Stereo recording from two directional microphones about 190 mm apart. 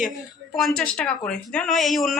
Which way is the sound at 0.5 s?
Centre (ahead or behind).